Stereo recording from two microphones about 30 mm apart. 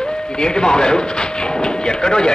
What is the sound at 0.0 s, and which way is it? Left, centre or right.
Speech, left.